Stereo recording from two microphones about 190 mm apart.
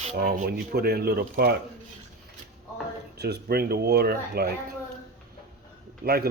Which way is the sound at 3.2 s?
60° right (ahead or behind).